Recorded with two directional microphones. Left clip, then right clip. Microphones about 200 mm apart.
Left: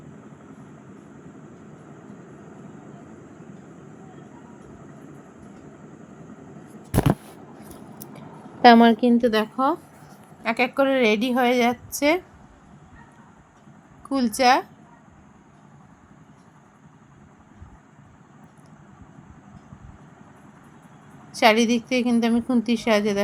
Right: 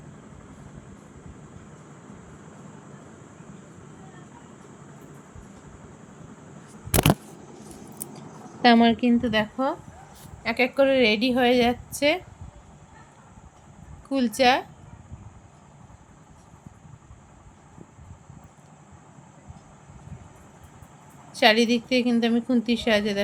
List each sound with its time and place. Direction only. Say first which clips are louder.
8.6 s speech: left 5 dB; 20° left (ahead or behind)
10.4 s a woman's voice: even; 10° left (ahead or behind)
14.1 s a woman's voice: left 2 dB; 5° left (ahead or behind)
21.3 s a woman's voice: left 1 dB; 5° left (ahead or behind)